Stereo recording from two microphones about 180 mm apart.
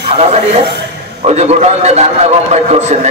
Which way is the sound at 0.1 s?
35° right (ahead or behind).